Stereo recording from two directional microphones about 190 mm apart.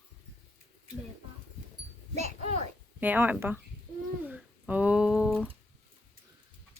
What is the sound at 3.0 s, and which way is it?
Speech, 10° right (ahead or behind).